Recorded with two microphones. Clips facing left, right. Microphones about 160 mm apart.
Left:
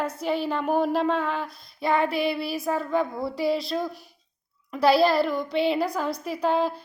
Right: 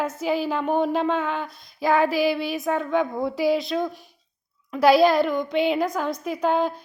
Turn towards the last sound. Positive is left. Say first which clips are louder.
# right 2 dB
turn(degrees=0)  # may be behind; listen again after turning